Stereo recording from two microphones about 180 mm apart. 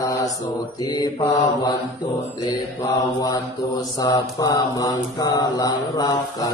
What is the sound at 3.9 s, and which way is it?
Mantra, 20° left (ahead or behind).